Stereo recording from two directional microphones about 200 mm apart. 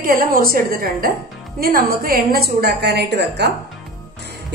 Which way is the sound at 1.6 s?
45° right (ahead or behind).